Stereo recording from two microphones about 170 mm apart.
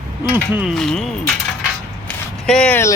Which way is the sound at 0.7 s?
5° left (ahead or behind).